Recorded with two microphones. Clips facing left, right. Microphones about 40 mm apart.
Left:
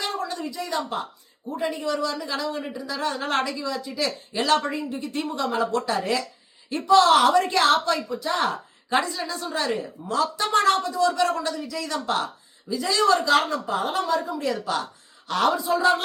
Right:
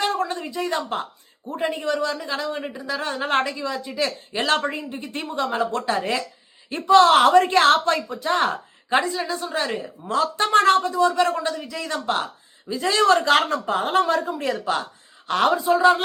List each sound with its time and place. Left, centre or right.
0.0 s speech: right
8.9 s speech: right
10.1 s speech: right
14.5 s speech: right